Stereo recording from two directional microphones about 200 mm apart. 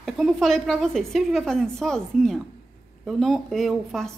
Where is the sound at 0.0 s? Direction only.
Centre (ahead or behind).